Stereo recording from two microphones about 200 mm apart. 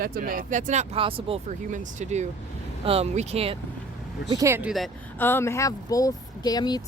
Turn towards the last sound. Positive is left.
turn(degrees=20)  # may be behind; listen again after turning